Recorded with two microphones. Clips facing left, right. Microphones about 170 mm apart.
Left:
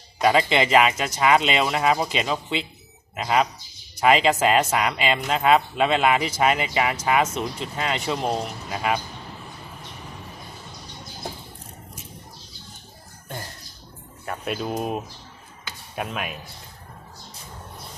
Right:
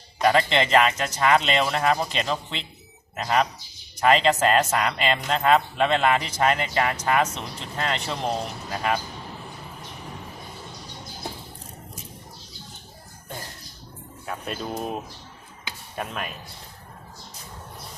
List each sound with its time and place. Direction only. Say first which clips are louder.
0.2 s speech: left 1 dB; 15° left (ahead or behind)
14.3 s speech: left 3 dB; 5° left (ahead or behind)
16.0 s speech: left 2 dB; 10° left (ahead or behind)